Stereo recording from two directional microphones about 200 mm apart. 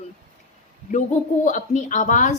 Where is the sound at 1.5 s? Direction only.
40° left (ahead or behind).